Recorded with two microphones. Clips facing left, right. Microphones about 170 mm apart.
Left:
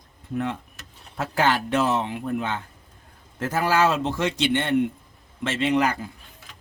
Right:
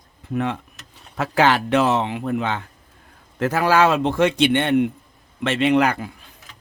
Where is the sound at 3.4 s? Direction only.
70° right (ahead or behind).